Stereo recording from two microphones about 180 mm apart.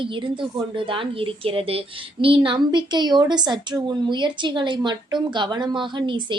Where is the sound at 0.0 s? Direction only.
25° right (ahead or behind).